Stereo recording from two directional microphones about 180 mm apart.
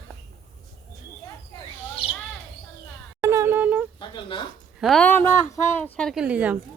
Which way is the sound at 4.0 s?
25° left (ahead or behind).